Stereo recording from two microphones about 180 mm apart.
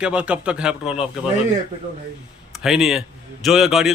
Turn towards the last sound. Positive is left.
turn(degrees=0)  # may be behind; listen again after turning